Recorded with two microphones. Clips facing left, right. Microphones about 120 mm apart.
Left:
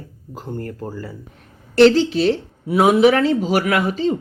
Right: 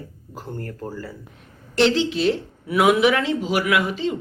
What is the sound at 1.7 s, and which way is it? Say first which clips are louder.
Speech: left 7 dB; 40° left (ahead or behind).